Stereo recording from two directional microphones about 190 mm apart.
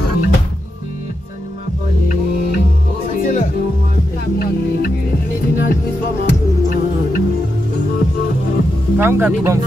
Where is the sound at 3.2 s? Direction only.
45° left (ahead or behind).